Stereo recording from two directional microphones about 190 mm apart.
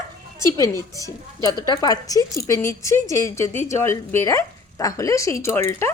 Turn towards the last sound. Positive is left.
turn(degrees=15)  # may be behind; listen again after turning